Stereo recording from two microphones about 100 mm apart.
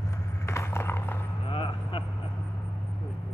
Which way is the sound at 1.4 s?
60° left (ahead or behind).